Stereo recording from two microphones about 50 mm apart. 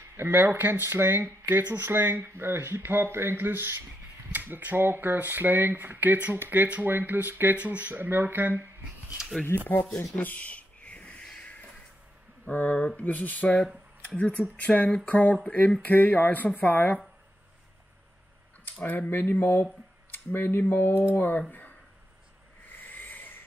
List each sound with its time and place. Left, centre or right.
0.2 s speech: right
4.3 s speech: right
7.5 s speech: right
9.5 s speech: left
10.1 s a sound: left
12.7 s speech: left
13.0 s speech: left
18.7 s speech: left
22.7 s a sound: left